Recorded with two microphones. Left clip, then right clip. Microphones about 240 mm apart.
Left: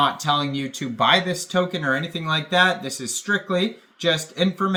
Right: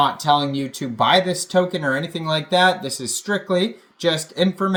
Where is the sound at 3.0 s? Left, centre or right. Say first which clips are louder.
Right 1 dB; centre.